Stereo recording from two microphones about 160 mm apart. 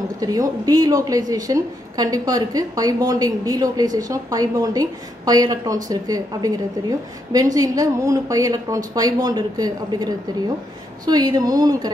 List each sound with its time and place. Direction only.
0.2 s a woman's voice: 20° right (ahead or behind)